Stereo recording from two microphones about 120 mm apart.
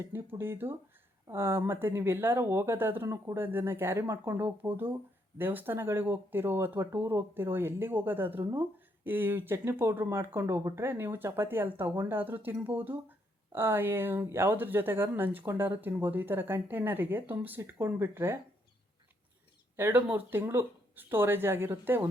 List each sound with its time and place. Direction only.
0.0 s speech: 20° right (ahead or behind)
19.7 s speech: 15° right (ahead or behind)